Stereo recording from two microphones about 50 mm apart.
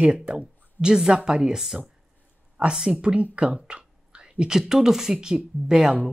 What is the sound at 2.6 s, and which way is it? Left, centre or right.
Speech, right.